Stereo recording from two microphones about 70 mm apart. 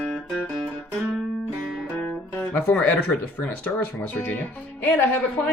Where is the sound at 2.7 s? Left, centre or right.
Centre.